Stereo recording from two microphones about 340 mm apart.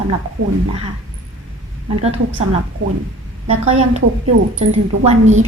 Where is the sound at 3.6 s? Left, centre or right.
Centre.